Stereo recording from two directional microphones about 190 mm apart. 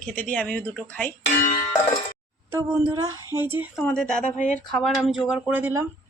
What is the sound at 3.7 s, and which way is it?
Speech, 5° left (ahead or behind).